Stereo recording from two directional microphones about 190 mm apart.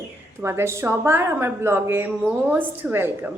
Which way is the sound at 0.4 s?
15° right (ahead or behind).